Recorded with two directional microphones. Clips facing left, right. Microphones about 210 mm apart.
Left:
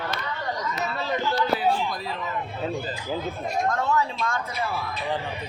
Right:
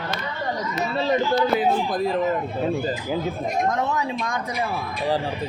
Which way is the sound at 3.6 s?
20° right (ahead or behind).